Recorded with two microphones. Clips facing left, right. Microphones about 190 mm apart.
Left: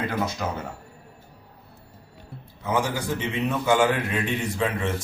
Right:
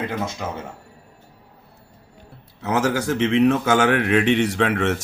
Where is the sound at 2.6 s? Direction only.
80° right.